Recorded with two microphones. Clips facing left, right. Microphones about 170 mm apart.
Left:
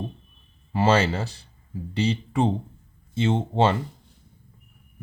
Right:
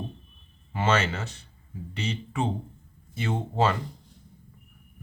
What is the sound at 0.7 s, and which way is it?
Speech, 35° left (ahead or behind).